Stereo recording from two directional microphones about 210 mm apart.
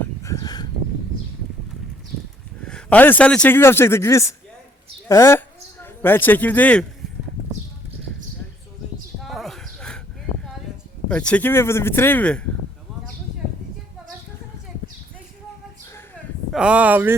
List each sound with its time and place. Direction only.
0.0 s a sound: 15° left (ahead or behind)
2.6 s a man's voice: 5° left (ahead or behind)
9.2 s horse: centre (ahead or behind)
11.1 s a man's voice: 5° left (ahead or behind)
16.5 s speech: 5° right (ahead or behind)